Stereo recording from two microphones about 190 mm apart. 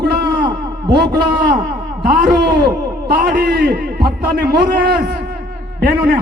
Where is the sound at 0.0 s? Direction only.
55° right (ahead or behind).